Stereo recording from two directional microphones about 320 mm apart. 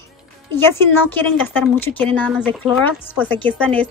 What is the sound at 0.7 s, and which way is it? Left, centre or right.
A woman's voice, centre.